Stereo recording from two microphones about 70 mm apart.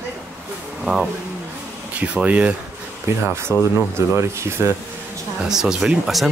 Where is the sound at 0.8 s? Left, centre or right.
Centre.